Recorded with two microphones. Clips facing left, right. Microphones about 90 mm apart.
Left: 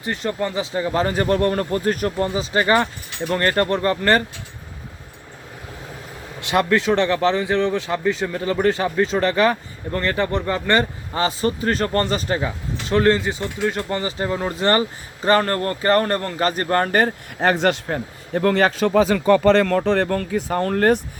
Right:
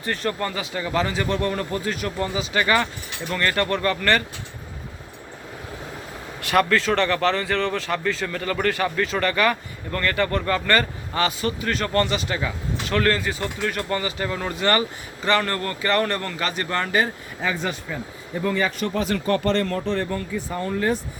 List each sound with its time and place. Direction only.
0.0 s speech: 20° left (ahead or behind)
6.4 s speech: 20° left (ahead or behind); by 21.0 s 65° left (ahead or behind)